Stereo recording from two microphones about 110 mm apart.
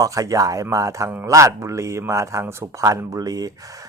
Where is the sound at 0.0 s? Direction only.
30° right (ahead or behind).